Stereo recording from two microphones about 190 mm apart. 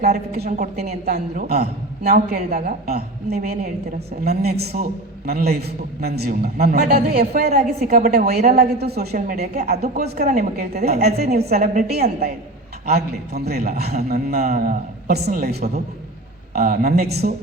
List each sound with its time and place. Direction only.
0.0 s a woman's voice: 55° right (ahead or behind)